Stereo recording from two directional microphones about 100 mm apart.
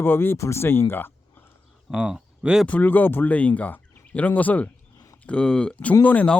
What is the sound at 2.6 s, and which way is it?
Speech, 15° left (ahead or behind).